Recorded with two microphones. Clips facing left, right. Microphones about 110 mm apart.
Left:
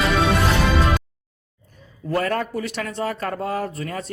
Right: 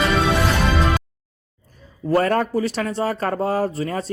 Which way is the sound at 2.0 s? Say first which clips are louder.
Right 5 dB; 35° right (ahead or behind).